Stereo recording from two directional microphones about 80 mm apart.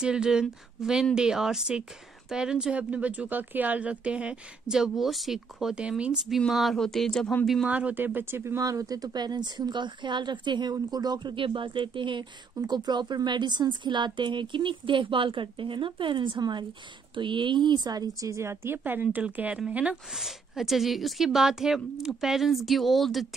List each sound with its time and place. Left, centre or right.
0.0 s speech: centre
6.2 s speech: centre
7.6 s a woman's voice: centre
8.6 s speech: right
17.1 s speech: right
18.3 s a woman's voice: right; by 20.0 s centre
20.2 s speech: centre